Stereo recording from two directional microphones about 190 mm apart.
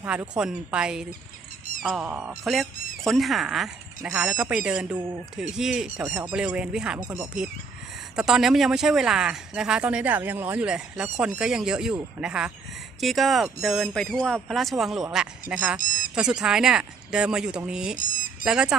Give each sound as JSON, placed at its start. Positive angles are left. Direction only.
{"t": 0.0, "sound": "speech", "side_deg": -5}
{"t": 15.8, "sound": "squawk", "side_deg": 45}
{"t": 16.1, "sound": "speech", "side_deg": -5}
{"t": 17.9, "sound": "speech", "side_deg": 45}
{"t": 18.4, "sound": "speech", "side_deg": -5}